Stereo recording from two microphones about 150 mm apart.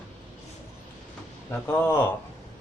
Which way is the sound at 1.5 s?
15° left (ahead or behind).